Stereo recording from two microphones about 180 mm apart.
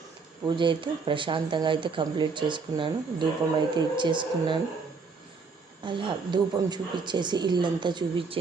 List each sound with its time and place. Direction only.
0.4 s speech: 25° right (ahead or behind)
5.8 s speech: 25° right (ahead or behind)